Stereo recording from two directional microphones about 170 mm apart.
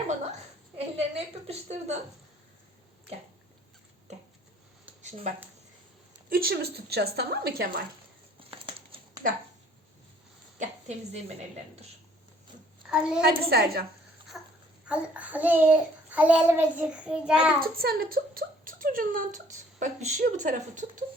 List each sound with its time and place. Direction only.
0.9 s a sound: 35° right (ahead or behind)
6.2 s speech: 60° right (ahead or behind)
8.4 s crumpling: 30° right (ahead or behind)
10.6 s a woman's voice: 40° right (ahead or behind)
12.9 s a child's voice: 5° right (ahead or behind)
13.2 s speech: 65° right (ahead or behind)
14.3 s babbling: centre (ahead or behind)
14.8 s a child's voice: 5° right (ahead or behind)
17.6 s speech: 60° right (ahead or behind)